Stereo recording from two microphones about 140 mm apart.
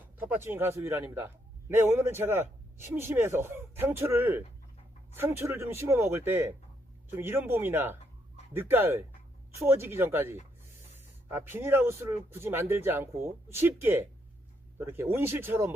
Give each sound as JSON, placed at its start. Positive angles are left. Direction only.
{"t": 0.2, "sound": "speech", "side_deg": -15}